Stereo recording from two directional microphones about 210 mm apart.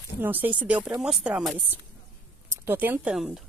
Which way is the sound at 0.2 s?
10° right (ahead or behind).